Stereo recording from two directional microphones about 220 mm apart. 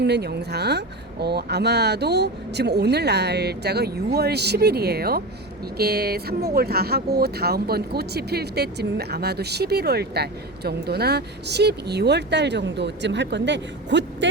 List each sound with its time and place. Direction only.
0.0 s speech: 50° right (ahead or behind)